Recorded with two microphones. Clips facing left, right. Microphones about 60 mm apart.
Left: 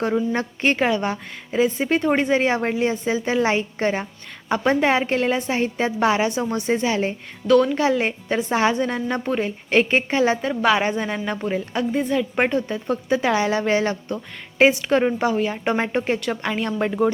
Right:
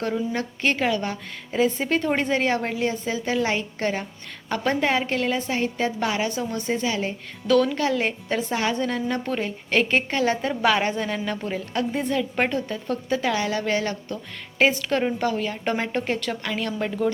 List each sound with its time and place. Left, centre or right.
0.3 s a woman's voice: left
1.5 s a woman's voice: centre; by 7.2 s left
7.6 s a woman's voice: centre
8.4 s a woman's voice: left
10.4 s a woman's voice: centre
11.9 s a woman's voice: centre
12.6 s a woman's voice: centre
14.6 s a woman's voice: centre
17.0 s a woman's voice: centre